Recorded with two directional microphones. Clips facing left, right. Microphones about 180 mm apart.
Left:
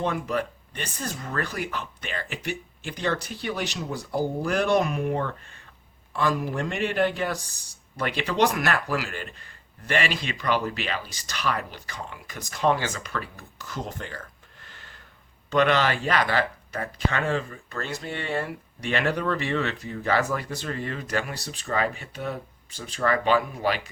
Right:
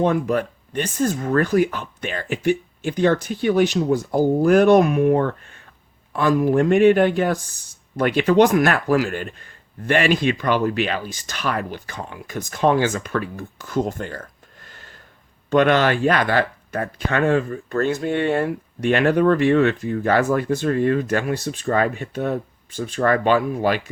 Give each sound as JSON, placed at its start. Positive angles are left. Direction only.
{"t": 0.0, "sound": "speech", "side_deg": -45}